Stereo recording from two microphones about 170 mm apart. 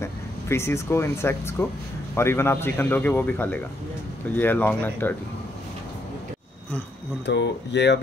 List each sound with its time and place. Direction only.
0.0 s a man's voice: 15° left (ahead or behind)
7.2 s speech: 90° left